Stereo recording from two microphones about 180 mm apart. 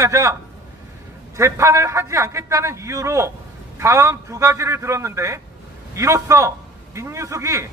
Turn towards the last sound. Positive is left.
turn(degrees=-15)  # may be behind; listen again after turning